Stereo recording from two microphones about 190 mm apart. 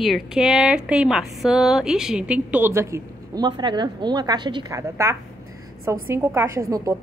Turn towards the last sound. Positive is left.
turn(degrees=-15)  # may be behind; listen again after turning